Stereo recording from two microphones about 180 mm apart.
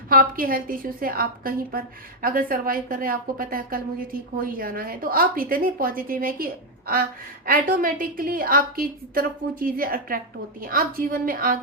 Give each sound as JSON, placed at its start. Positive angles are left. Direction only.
{"t": 0.1, "sound": "a woman's voice", "side_deg": -55}